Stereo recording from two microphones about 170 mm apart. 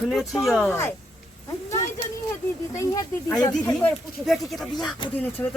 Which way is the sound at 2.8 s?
20° left (ahead or behind).